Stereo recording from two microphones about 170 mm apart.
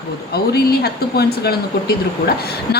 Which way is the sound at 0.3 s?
65° left (ahead or behind).